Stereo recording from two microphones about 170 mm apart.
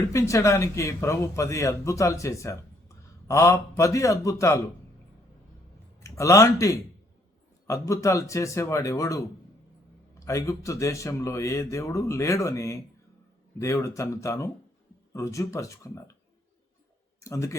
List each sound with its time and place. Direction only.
0.1 s speech: 20° left (ahead or behind)
6.0 s speech: 20° left (ahead or behind)
17.2 s speech: 20° left (ahead or behind)